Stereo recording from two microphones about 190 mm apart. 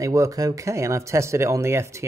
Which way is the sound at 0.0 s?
15° right (ahead or behind).